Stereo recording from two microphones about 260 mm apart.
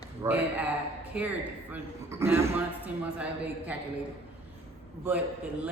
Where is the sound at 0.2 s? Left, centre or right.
Centre.